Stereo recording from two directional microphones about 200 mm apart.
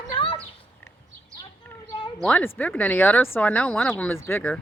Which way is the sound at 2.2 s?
5° left (ahead or behind).